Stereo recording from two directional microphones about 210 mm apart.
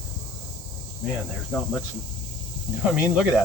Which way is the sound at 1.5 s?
5° left (ahead or behind).